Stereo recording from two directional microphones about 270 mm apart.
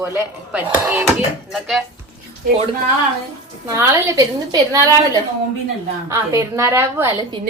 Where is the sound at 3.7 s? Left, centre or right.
Centre.